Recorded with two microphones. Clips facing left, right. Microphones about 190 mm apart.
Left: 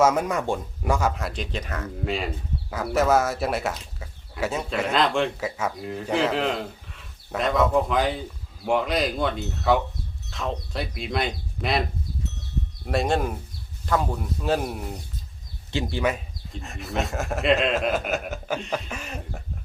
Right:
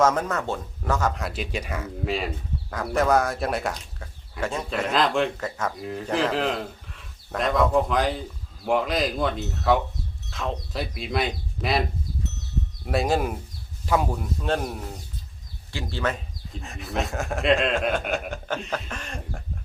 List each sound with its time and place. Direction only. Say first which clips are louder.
0.0 s speech: left 1 dB; 10° left (ahead or behind); by 14.3 s 10° right (ahead or behind)
14.4 s speech: left 2 dB; 5° left (ahead or behind)
15.7 s speech: left 3 dB; 20° left (ahead or behind)
16.5 s speech: left 1 dB; centre (ahead or behind)